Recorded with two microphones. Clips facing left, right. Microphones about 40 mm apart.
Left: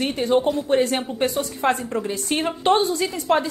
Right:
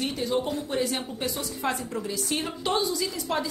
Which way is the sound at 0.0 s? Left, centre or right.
Left.